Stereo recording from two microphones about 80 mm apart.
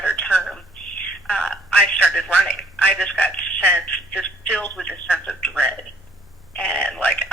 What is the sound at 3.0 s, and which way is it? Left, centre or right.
Speech, centre.